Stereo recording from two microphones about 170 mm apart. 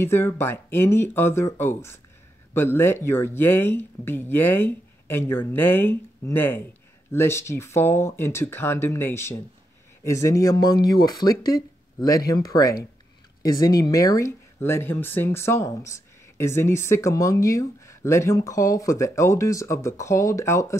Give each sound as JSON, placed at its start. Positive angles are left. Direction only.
{"t": 0.0, "sound": "speech", "side_deg": 15}